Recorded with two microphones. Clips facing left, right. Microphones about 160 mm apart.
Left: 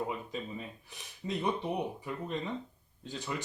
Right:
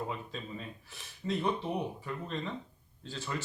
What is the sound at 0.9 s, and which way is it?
Speech, 15° left (ahead or behind).